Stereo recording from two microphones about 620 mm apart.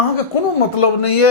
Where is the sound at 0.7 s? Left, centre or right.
Left.